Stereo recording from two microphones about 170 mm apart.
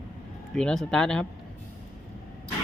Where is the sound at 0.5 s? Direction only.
5° left (ahead or behind).